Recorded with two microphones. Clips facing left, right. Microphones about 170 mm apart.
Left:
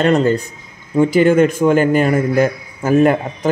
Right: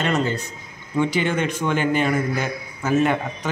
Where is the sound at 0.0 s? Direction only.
50° left (ahead or behind).